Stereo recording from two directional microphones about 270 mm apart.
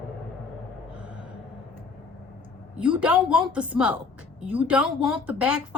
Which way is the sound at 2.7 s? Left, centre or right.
Centre.